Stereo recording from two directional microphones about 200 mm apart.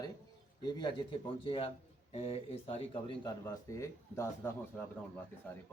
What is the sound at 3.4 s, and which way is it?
A man's voice, 15° left (ahead or behind).